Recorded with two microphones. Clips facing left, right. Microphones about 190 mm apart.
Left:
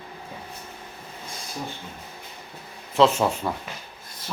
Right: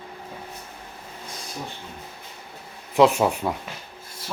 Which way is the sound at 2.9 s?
15° right (ahead or behind).